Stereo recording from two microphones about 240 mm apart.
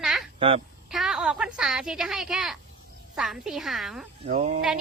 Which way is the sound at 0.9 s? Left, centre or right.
Centre.